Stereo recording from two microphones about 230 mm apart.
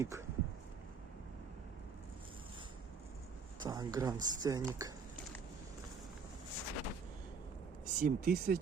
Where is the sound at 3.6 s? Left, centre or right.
Centre.